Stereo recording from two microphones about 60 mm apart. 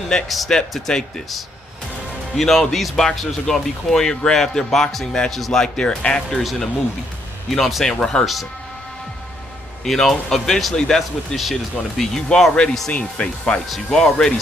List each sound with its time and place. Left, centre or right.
0.3 s speech: centre
9.8 s speech: centre
13.7 s speech: centre